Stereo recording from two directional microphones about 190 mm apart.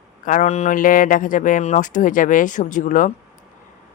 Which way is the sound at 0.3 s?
40° left (ahead or behind).